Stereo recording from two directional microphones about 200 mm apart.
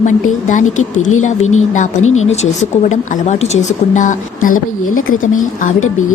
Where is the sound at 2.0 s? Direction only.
90° left.